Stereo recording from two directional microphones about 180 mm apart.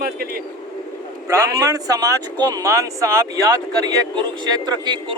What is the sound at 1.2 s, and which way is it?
Speech, 20° right (ahead or behind).